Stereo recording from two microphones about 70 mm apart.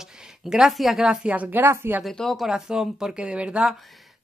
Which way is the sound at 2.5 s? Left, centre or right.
Centre.